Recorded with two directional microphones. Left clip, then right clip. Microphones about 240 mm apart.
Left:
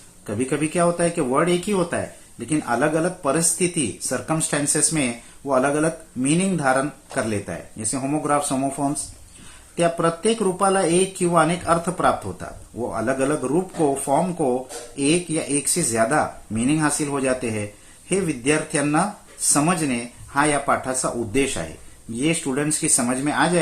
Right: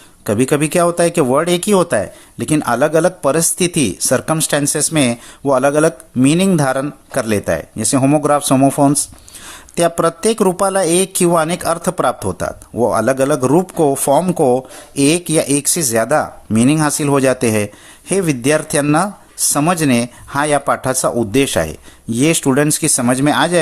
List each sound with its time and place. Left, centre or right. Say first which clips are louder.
0.3 s speech: right 9 dB; right